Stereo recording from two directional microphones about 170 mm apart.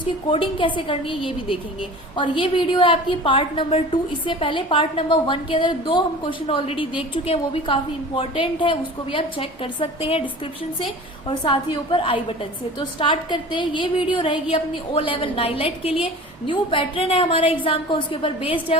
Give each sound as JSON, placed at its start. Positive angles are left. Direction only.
{"t": 0.3, "sound": "a woman's voice", "side_deg": 30}
{"t": 11.3, "sound": "a woman's voice", "side_deg": 30}